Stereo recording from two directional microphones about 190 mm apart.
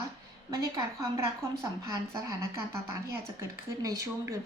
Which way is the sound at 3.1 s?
15° right (ahead or behind).